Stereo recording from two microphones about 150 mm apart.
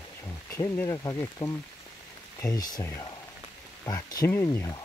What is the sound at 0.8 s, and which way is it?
Speech, 20° left (ahead or behind).